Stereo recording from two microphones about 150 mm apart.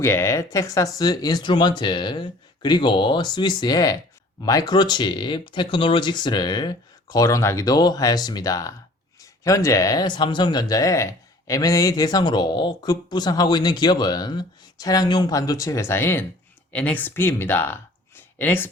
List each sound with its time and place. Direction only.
0.0 s speech: 15° left (ahead or behind)